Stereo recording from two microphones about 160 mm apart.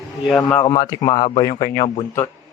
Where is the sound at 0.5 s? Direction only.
25° left (ahead or behind).